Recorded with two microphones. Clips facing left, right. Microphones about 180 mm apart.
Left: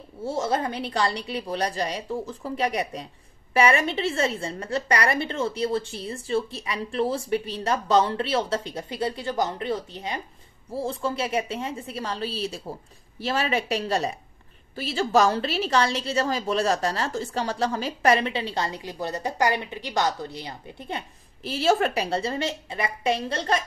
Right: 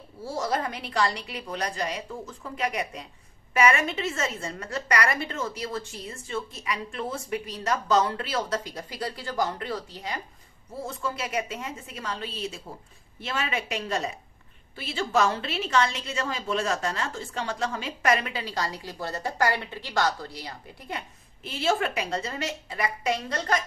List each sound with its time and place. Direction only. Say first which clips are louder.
0.2 s a woman's voice: left 3 dB; 25° left (ahead or behind)
21.4 s a woman's voice: left 4 dB; 35° left (ahead or behind)